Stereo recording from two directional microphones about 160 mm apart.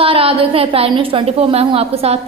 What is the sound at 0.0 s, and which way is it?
A woman's voice, 35° right (ahead or behind).